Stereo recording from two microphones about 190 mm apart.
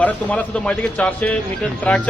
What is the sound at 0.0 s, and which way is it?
Speech, 10° left (ahead or behind).